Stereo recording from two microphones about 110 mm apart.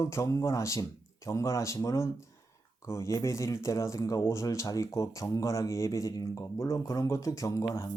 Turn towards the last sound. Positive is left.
turn(degrees=30)  # may be behind; listen again after turning